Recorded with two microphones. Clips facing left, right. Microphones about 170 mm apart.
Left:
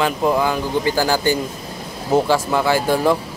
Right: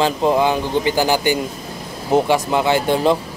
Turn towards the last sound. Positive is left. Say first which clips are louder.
# right 1 dB
turn(degrees=-20)  # may be behind; listen again after turning